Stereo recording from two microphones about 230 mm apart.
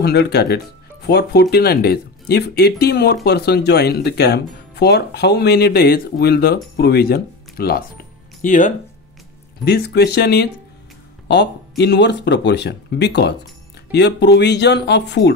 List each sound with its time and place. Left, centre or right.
0.0 s speech: left
9.7 s speech: left